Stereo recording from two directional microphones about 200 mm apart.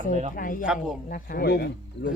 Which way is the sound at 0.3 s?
45° left (ahead or behind).